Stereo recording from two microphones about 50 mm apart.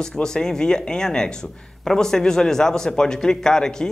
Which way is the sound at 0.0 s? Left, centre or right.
Centre.